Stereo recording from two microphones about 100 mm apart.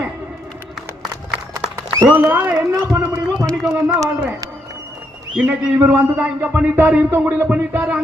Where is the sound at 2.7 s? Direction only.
30° right (ahead or behind).